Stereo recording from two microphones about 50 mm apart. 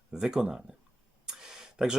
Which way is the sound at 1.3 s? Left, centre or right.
Centre.